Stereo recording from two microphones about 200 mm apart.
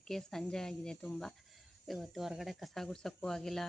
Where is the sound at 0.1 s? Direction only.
Centre (ahead or behind).